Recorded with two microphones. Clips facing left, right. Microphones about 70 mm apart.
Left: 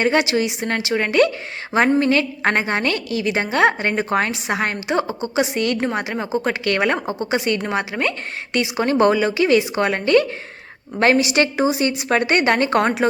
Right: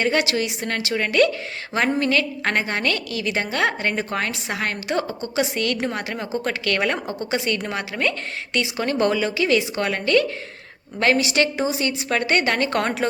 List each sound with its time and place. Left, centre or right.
0.0 s a woman's voice: left